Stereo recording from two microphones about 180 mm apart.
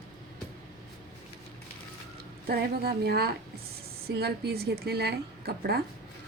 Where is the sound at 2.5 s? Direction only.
60° right (ahead or behind).